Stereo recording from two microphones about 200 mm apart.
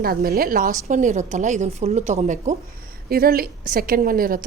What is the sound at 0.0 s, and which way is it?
A woman's voice, 50° right (ahead or behind).